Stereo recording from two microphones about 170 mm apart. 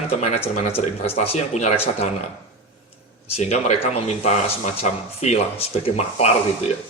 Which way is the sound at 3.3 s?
40° left (ahead or behind).